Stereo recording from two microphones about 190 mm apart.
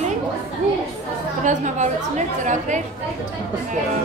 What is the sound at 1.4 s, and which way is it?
A woman's voice, 40° right (ahead or behind).